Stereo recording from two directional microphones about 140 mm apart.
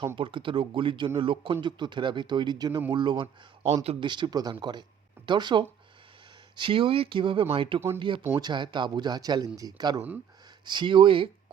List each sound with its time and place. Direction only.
0.2 s speech: 35° right (ahead or behind)